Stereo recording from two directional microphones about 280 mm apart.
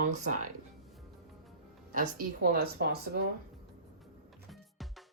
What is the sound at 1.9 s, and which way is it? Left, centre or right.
Speech, right.